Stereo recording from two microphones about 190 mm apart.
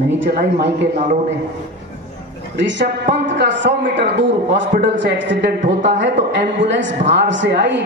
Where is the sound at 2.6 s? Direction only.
70° right (ahead or behind).